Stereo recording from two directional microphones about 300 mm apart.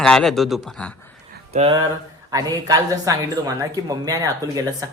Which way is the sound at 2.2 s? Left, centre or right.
Centre.